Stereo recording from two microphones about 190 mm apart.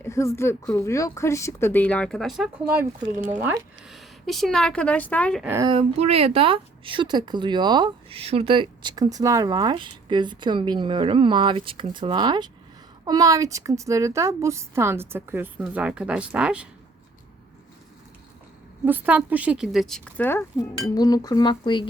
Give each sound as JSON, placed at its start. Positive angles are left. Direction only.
{"t": 0.0, "sound": "a woman's voice", "side_deg": 15}
{"t": 5.4, "sound": "a woman's voice", "side_deg": -10}
{"t": 5.6, "sound": "a woman's voice", "side_deg": -30}
{"t": 18.9, "sound": "speech", "side_deg": -10}